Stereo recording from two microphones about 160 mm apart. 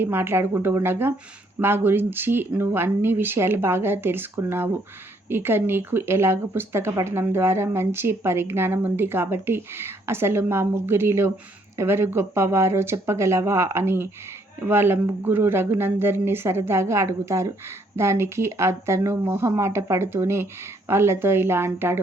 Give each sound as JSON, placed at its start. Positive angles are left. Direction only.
{"t": 0.0, "sound": "speech", "side_deg": -15}